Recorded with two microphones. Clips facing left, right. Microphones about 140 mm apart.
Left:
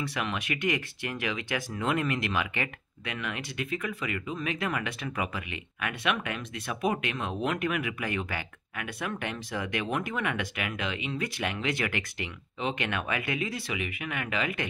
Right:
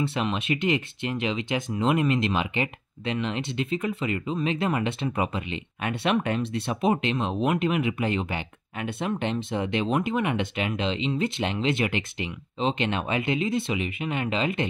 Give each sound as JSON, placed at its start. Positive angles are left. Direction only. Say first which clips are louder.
{"t": 0.0, "sound": "speech", "louder": "right 5 dB", "side_deg": -25}